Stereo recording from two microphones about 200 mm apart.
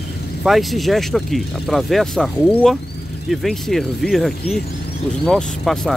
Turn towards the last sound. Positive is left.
turn(degrees=0)  # may be behind; listen again after turning